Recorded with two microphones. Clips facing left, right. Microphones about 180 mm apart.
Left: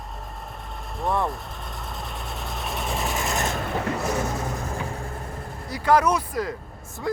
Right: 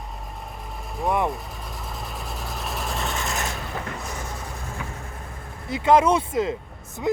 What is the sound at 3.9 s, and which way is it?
Vehicle, 70° left (ahead or behind).